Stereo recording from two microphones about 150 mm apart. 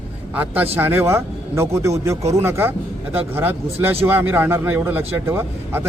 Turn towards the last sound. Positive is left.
turn(degrees=-15)  # may be behind; listen again after turning